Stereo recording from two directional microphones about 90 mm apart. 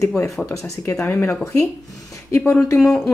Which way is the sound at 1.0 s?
25° left (ahead or behind).